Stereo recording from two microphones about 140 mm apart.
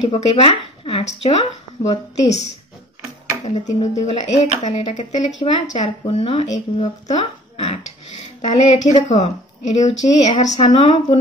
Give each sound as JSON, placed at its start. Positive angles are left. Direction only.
{"t": 0.0, "sound": "speech", "side_deg": 45}
{"t": 3.4, "sound": "a woman's voice", "side_deg": 50}